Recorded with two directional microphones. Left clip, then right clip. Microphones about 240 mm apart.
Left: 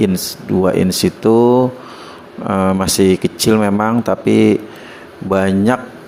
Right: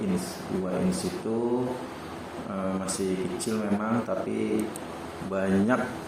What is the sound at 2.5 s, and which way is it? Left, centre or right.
Speech, left.